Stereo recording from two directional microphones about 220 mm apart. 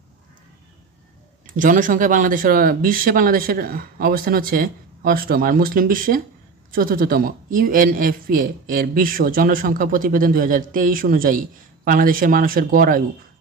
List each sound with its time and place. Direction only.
1.5 s speech: 40° right (ahead or behind)